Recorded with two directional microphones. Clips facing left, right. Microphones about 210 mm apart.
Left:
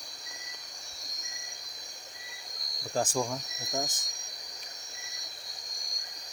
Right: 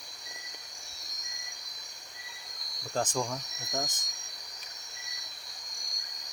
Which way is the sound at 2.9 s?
10° left (ahead or behind).